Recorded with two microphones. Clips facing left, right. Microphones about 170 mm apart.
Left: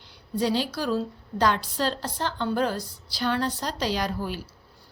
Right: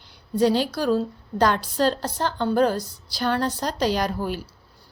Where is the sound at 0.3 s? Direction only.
50° right (ahead or behind).